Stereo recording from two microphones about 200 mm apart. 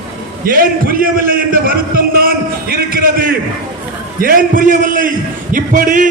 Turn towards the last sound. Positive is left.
turn(degrees=-40)  # may be behind; listen again after turning